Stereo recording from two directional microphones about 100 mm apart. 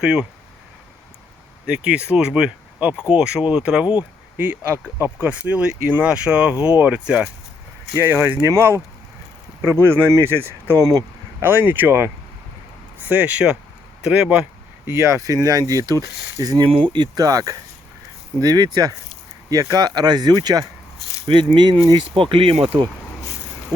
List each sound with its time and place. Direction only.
0.0 s speech: 10° right (ahead or behind)
1.6 s speech: 10° right (ahead or behind)
7.9 s speech: 25° right (ahead or behind)
10.8 s speech: 40° right (ahead or behind)
11.4 s speech: 20° right (ahead or behind)
14.8 s speech: 30° right (ahead or behind)
16.8 s speech: 50° right (ahead or behind)
17.2 s speech: 35° right (ahead or behind)
21.2 s speech: 55° right (ahead or behind)